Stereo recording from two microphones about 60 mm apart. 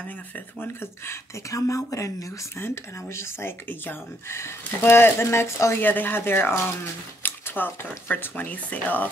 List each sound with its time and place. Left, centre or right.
1.5 s speech: left
2.5 s speech: left
5.9 s speech: left
7.2 s a sound: left
8.1 s speech: left